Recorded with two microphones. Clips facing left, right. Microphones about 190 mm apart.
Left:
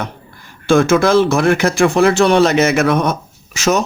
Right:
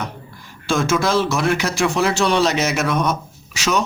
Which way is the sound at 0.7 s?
55° left (ahead or behind).